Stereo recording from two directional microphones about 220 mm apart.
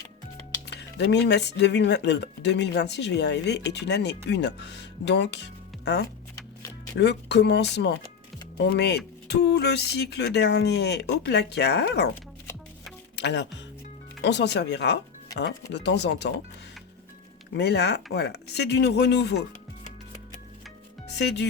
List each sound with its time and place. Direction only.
0.7 s speech: 50° left (ahead or behind)
13.1 s speech: 50° left (ahead or behind)
17.5 s speech: 50° left (ahead or behind)
21.1 s speech: 50° left (ahead or behind)